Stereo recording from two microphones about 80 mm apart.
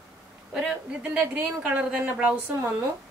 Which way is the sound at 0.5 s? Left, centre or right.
Centre.